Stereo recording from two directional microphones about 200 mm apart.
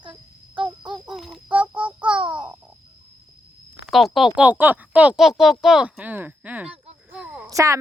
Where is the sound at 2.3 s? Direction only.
5° right (ahead or behind).